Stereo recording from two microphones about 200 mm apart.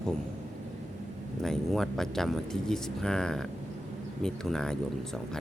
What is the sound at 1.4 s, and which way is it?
Speech, centre (ahead or behind).